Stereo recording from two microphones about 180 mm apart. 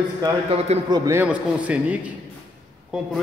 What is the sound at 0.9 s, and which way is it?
A man's voice, 15° right (ahead or behind).